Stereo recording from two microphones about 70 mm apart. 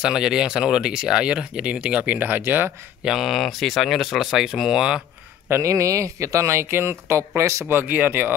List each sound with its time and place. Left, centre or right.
0.0 s speech: centre; by 2.7 s right
3.0 s speech: centre
5.5 s speech: right
7.6 s speech: right